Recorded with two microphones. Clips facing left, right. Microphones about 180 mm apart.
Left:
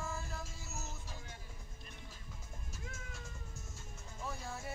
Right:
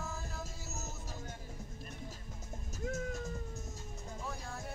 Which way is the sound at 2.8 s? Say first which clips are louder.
Right 14 dB; 40° right (ahead or behind).